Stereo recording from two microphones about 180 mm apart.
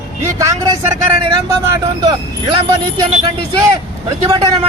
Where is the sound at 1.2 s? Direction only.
25° right (ahead or behind).